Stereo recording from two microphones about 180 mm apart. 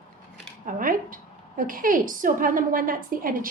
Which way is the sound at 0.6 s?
50° right (ahead or behind).